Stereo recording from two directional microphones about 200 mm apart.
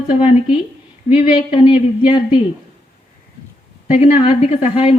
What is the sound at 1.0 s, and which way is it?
Speech, 30° left (ahead or behind).